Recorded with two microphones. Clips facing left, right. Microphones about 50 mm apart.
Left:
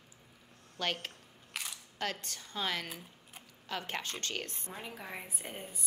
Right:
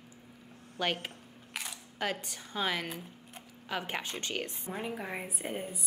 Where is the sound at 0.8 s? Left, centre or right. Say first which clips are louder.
Right 3 dB; centre.